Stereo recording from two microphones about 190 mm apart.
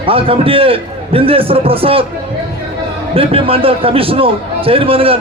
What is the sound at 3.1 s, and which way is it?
A man's voice, 30° right (ahead or behind).